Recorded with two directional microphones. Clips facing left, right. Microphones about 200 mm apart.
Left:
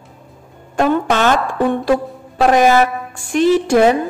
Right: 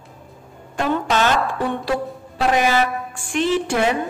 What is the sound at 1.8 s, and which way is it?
Music, 50° left (ahead or behind).